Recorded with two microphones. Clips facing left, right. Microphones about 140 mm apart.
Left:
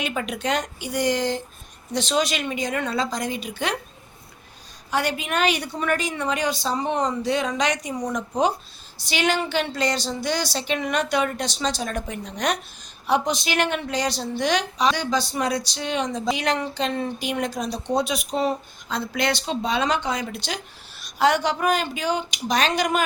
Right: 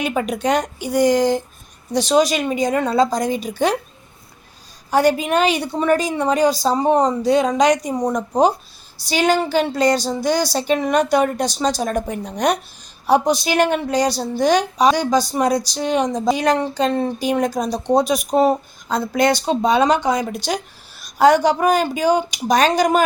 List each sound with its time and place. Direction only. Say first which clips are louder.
0.0 s a woman's voice: right 6 dB; 40° right (ahead or behind)
4.9 s a woman's voice: right 9 dB; 40° right (ahead or behind)